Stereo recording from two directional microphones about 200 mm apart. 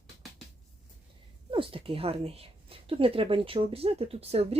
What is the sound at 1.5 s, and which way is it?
A woman's voice, 25° right (ahead or behind).